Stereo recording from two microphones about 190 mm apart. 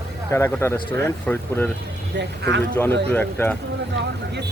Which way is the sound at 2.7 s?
10° left (ahead or behind).